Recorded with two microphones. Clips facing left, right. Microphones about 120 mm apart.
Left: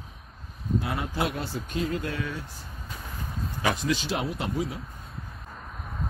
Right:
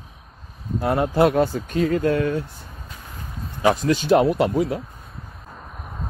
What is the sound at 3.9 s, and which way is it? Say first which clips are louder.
Speech: right 11 dB; 50° right (ahead or behind).